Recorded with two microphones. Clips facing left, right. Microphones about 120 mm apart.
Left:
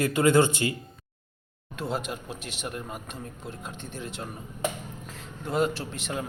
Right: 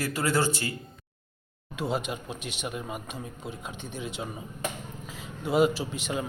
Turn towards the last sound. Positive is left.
turn(degrees=0)  # may be behind; listen again after turning